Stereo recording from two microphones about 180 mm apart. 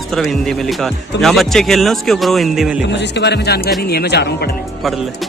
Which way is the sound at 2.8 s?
75° left (ahead or behind).